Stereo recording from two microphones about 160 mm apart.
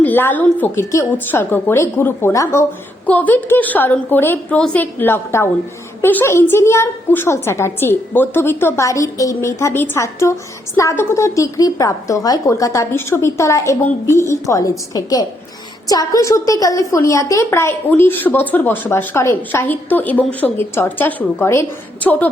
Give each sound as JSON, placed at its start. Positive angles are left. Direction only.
{"t": 0.0, "sound": "a woman's voice", "side_deg": 10}